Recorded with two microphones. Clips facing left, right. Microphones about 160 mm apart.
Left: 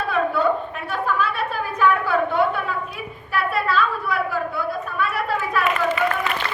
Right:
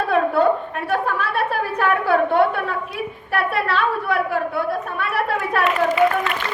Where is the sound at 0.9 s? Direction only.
60° right (ahead or behind).